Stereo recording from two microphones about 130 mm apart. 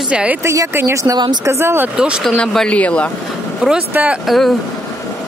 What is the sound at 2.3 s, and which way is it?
Speech, 5° left (ahead or behind).